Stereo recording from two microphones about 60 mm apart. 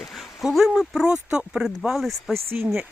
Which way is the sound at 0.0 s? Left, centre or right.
Centre.